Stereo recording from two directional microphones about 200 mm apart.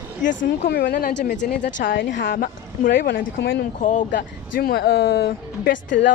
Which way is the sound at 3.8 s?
40° left (ahead or behind).